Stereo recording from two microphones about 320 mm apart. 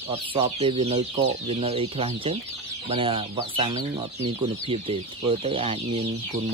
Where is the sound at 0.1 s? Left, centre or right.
Centre.